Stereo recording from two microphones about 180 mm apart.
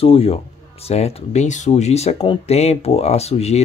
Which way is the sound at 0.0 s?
35° left (ahead or behind).